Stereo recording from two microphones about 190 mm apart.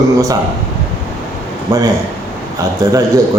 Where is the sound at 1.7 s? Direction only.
15° right (ahead or behind).